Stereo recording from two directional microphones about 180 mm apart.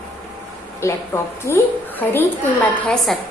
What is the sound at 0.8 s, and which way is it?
Speech, 15° left (ahead or behind).